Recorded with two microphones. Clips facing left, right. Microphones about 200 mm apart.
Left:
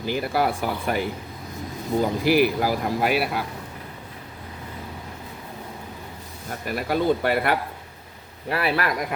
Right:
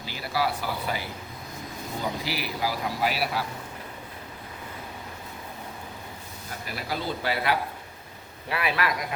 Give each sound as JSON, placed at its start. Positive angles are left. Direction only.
{"t": 0.0, "sound": "speech", "side_deg": 50}
{"t": 6.7, "sound": "speech", "side_deg": 55}
{"t": 8.4, "sound": "speech", "side_deg": 40}